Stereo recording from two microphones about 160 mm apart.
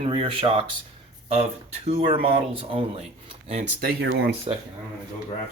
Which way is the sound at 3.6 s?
75° right (ahead or behind).